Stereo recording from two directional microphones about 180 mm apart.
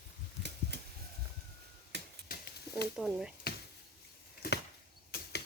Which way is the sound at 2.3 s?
55° left (ahead or behind).